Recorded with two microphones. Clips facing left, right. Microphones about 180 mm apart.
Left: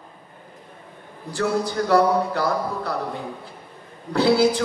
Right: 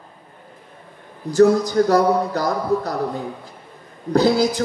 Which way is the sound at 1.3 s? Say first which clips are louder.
Right 9 dB; 40° right (ahead or behind).